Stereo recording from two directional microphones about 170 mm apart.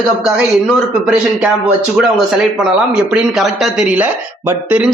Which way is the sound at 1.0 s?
5° right (ahead or behind).